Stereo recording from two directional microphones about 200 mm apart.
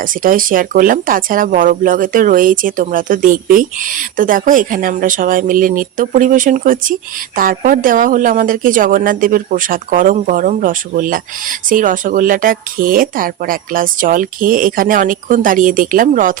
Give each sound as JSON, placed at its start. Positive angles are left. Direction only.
{"t": 0.0, "sound": "speech", "side_deg": -45}